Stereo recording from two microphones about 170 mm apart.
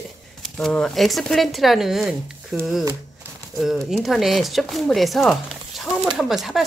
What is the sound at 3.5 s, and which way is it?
Speech, centre (ahead or behind).